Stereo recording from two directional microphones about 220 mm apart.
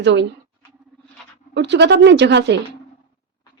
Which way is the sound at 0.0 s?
55° right (ahead or behind).